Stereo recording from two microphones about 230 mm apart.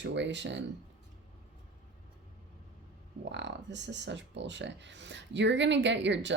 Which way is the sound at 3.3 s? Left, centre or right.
Right.